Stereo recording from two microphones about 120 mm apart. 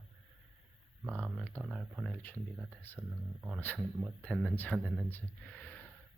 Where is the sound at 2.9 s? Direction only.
15° right (ahead or behind).